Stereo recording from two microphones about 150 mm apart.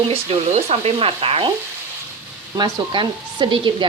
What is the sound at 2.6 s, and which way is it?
Speech, 30° right (ahead or behind).